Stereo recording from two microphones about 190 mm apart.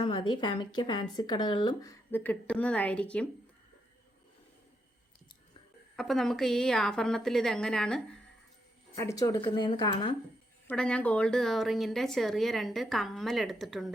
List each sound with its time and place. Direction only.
0.0 s speech: 25° left (ahead or behind); by 3.2 s 5° left (ahead or behind)
6.0 s speech: centre (ahead or behind)
9.0 s speech: 15° left (ahead or behind)
10.7 s speech: 5° left (ahead or behind)